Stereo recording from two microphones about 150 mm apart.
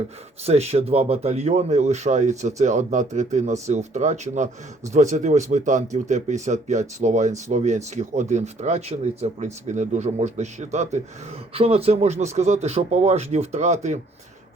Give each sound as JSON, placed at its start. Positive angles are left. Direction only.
{"t": 0.4, "sound": "speech", "side_deg": -45}